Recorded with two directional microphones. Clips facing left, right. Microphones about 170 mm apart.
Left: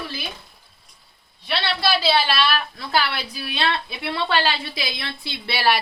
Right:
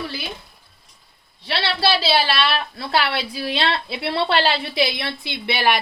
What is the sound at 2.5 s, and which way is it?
A woman's voice, 30° right (ahead or behind).